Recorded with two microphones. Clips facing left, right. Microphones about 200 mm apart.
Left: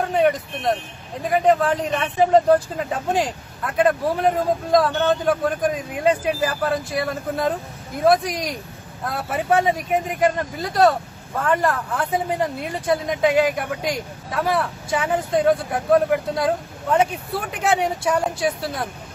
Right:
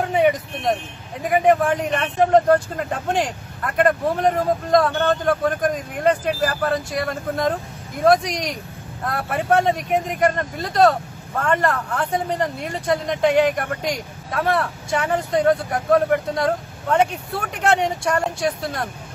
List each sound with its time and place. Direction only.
1.2 s speech: 5° right (ahead or behind)
2.0 s speech: 5° left (ahead or behind)